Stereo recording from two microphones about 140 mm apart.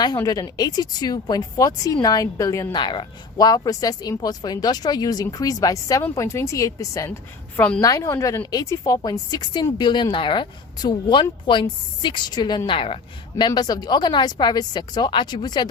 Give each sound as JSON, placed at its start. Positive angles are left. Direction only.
{"t": 0.0, "sound": "speech", "side_deg": 30}
{"t": 2.8, "sound": "speech", "side_deg": 35}
{"t": 13.3, "sound": "speech", "side_deg": 30}